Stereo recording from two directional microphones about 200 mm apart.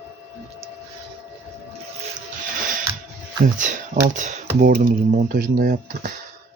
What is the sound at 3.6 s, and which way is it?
Speech, 40° right (ahead or behind).